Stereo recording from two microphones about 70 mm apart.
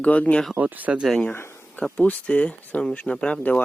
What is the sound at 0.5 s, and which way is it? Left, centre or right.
Speech, right.